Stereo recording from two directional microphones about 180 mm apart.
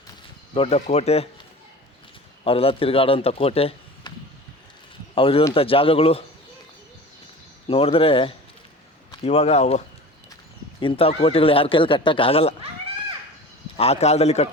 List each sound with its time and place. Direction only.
0.5 s speech: 35° left (ahead or behind)
2.4 s a man's voice: 30° left (ahead or behind)
5.1 s speech: 30° left (ahead or behind)
7.7 s speech: 30° left (ahead or behind)
13.7 s speech: 35° left (ahead or behind)